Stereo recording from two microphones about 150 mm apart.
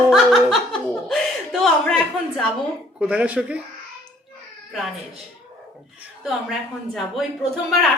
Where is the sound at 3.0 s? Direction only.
10° right (ahead or behind).